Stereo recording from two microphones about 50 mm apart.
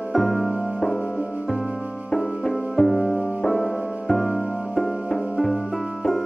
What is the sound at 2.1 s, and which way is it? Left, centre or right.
Music, centre.